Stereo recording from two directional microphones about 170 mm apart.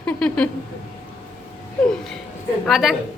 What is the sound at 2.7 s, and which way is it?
Speech, centre (ahead or behind).